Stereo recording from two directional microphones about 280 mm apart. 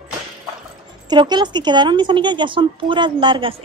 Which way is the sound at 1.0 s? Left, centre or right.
Centre.